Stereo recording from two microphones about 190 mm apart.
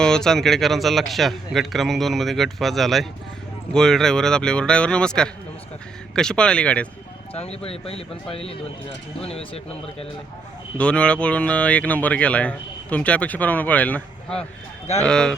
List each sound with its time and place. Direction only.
0.0 s a man's voice: 5° left (ahead or behind)
7.3 s speech: 35° left (ahead or behind)
10.8 s a man's voice: 5° left (ahead or behind)